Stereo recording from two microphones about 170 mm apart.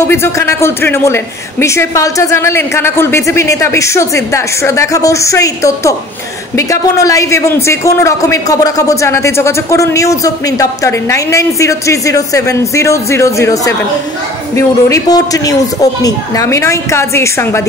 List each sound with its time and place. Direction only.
0.1 s a man's voice: 15° left (ahead or behind)